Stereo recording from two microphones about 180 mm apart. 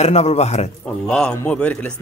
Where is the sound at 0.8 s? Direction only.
5° left (ahead or behind).